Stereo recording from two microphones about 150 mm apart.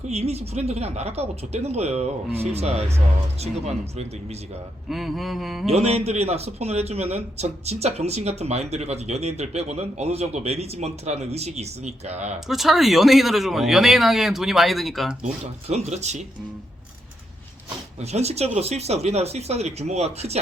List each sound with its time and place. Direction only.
0.1 s a man's voice: 45° right (ahead or behind)
4.9 s speech: centre (ahead or behind)
5.6 s a man's voice: 45° right (ahead or behind)
12.5 s speech: centre (ahead or behind)
15.7 s a man's voice: 50° right (ahead or behind)
18.0 s a man's voice: 45° right (ahead or behind)